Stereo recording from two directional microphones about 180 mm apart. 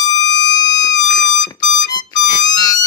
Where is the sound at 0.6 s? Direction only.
20° left (ahead or behind).